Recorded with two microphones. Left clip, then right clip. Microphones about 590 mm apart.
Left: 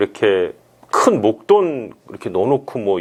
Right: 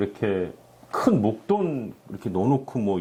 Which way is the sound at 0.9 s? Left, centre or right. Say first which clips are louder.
Left 9 dB; left.